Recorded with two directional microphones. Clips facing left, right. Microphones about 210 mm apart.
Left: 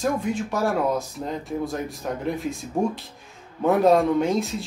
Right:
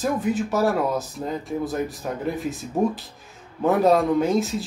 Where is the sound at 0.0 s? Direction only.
5° right (ahead or behind).